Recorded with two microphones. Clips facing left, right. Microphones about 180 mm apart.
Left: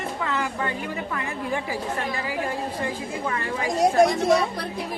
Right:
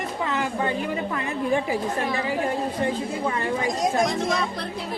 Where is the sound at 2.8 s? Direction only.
25° right (ahead or behind).